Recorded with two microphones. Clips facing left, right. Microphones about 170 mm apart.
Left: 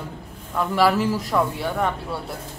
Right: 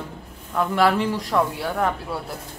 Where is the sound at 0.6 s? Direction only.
Centre (ahead or behind).